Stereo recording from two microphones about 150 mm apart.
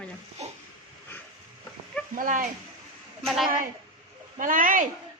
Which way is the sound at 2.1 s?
65° right (ahead or behind).